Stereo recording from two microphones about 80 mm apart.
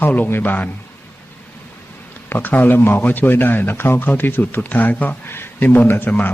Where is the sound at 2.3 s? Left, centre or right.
Left.